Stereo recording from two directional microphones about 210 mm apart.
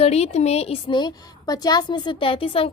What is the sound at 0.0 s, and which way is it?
A woman's voice, 30° left (ahead or behind).